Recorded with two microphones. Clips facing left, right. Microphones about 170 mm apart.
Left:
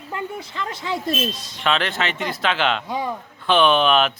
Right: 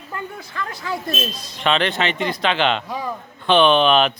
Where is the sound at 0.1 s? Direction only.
20° left (ahead or behind).